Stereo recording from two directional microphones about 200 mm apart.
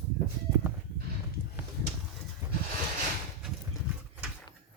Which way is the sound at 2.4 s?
10° right (ahead or behind).